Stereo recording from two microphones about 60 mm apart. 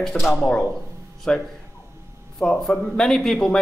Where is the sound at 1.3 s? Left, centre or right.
Centre.